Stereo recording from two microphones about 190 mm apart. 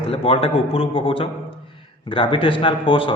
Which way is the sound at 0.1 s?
30° left (ahead or behind).